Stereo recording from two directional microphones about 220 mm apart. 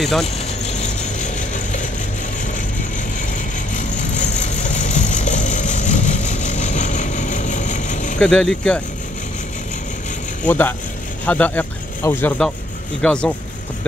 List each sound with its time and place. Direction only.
0.0 s speech: centre (ahead or behind)
0.7 s ratchet: 30° left (ahead or behind)
3.2 s vehicle: 35° left (ahead or behind)
8.2 s speech: 5° left (ahead or behind)
10.4 s speech: 10° left (ahead or behind)